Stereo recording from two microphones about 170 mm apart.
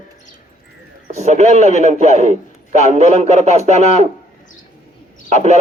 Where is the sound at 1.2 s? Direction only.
40° right (ahead or behind).